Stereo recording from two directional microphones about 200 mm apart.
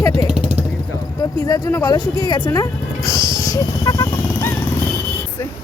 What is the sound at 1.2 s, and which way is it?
Speech, 15° left (ahead or behind).